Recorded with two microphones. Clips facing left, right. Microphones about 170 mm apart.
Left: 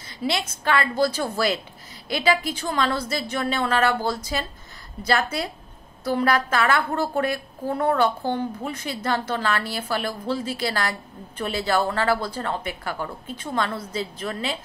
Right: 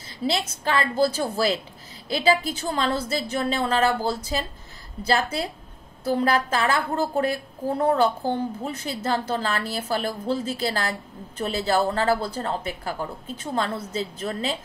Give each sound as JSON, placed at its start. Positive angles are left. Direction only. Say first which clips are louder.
{"t": 0.2, "sound": "a woman's voice", "louder": "right 1 dB", "side_deg": -35}
{"t": 6.1, "sound": "a woman's voice", "louder": "left 1 dB", "side_deg": -30}